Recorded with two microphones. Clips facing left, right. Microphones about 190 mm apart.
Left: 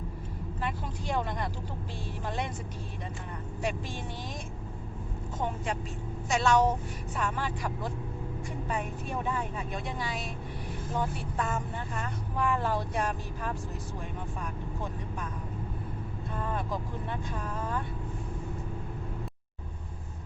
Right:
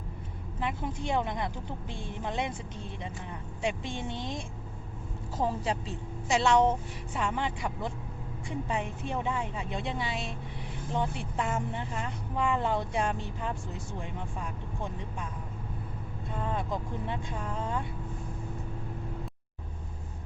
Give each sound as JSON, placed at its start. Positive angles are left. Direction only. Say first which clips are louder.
{"t": 0.8, "sound": "speech", "louder": "right 4 dB", "side_deg": -20}
{"t": 3.6, "sound": "speech", "louder": "right 2 dB", "side_deg": -25}
{"t": 5.4, "sound": "speech", "louder": "right 3 dB", "side_deg": -35}
{"t": 16.4, "sound": "speech", "louder": "right 1 dB", "side_deg": -20}